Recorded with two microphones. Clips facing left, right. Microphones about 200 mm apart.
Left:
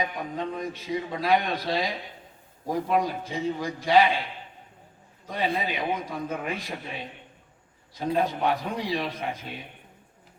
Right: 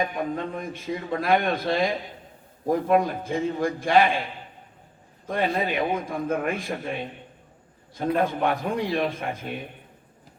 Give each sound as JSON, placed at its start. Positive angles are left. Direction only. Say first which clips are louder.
{"t": 0.0, "sound": "a man's voice", "louder": "right 3 dB", "side_deg": -50}
{"t": 5.6, "sound": "a man's voice", "louder": "right 4 dB", "side_deg": -50}